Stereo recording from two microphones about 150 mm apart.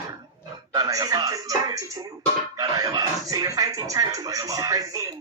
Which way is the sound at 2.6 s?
25° right (ahead or behind).